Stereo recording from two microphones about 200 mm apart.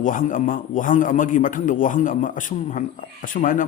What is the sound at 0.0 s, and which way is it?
A man's voice, 40° left (ahead or behind).